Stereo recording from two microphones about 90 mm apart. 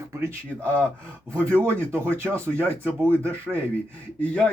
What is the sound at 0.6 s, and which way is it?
Speech, 15° left (ahead or behind).